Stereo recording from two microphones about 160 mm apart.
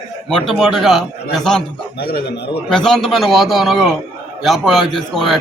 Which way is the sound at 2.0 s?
70° left (ahead or behind).